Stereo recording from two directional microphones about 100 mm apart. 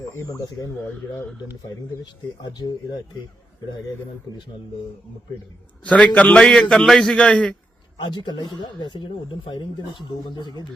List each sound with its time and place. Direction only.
0.1 s speech: 25° left (ahead or behind)
2.4 s speech: 45° left (ahead or behind)
5.8 s a man's voice: 15° left (ahead or behind)
7.9 s speech: 50° left (ahead or behind)